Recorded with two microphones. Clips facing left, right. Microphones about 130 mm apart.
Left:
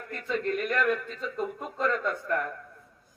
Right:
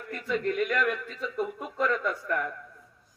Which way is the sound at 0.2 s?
10° right (ahead or behind).